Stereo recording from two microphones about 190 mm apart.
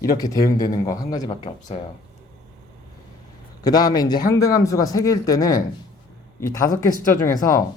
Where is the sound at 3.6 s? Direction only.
20° left (ahead or behind).